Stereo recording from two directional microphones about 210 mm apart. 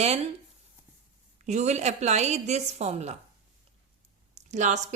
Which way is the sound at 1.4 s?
35° right (ahead or behind).